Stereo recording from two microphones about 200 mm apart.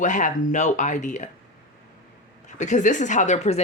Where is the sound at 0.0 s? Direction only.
40° left (ahead or behind).